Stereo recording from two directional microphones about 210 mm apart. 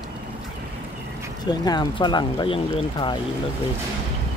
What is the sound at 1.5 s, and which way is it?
Speech, 20° left (ahead or behind).